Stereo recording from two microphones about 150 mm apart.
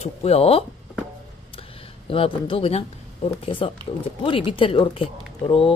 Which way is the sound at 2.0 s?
35° left (ahead or behind).